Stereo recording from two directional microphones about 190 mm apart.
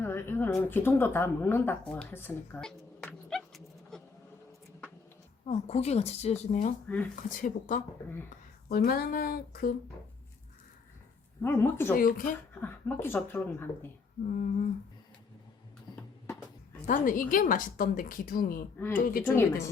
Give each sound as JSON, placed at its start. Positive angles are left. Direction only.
{"t": 0.0, "sound": "speech", "side_deg": 10}
{"t": 5.5, "sound": "a woman's voice", "side_deg": 35}
{"t": 6.8, "sound": "speech", "side_deg": 10}
{"t": 7.2, "sound": "a woman's voice", "side_deg": 45}
{"t": 8.7, "sound": "a woman's voice", "side_deg": 55}
{"t": 11.4, "sound": "speech", "side_deg": 10}
{"t": 11.9, "sound": "a woman's voice", "side_deg": 45}
{"t": 12.5, "sound": "speech", "side_deg": 10}
{"t": 14.3, "sound": "a woman's voice", "side_deg": 45}
{"t": 15.9, "sound": "music", "side_deg": 20}
{"t": 16.8, "sound": "a woman's voice", "side_deg": 45}
{"t": 19.2, "sound": "speech", "side_deg": 15}